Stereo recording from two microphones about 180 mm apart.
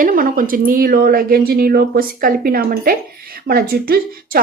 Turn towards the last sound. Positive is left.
turn(degrees=-60)  # may be behind; listen again after turning